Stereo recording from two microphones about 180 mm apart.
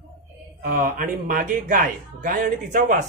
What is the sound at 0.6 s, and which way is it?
Speech, 45° right (ahead or behind).